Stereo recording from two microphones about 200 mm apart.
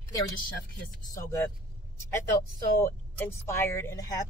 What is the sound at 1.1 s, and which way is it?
Speech, 10° left (ahead or behind).